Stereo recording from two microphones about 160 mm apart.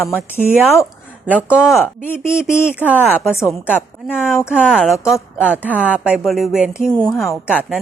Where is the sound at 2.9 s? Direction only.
15° left (ahead or behind).